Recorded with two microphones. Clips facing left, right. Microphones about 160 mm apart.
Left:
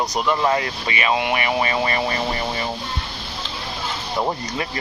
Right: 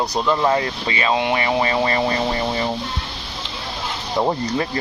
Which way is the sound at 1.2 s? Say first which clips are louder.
Right 2 dB; 30° right (ahead or behind).